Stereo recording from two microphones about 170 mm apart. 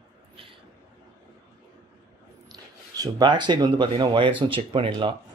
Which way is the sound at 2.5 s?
25° right (ahead or behind).